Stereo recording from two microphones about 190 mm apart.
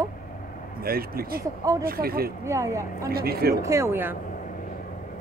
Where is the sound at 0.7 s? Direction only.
50° right (ahead or behind).